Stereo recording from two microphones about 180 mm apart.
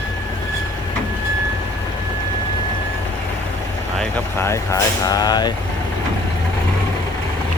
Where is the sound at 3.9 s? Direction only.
10° left (ahead or behind).